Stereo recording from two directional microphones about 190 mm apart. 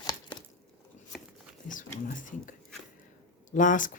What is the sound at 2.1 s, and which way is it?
Whispering, 45° left (ahead or behind).